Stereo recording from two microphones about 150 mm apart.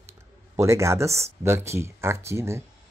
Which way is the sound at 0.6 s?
20° right (ahead or behind).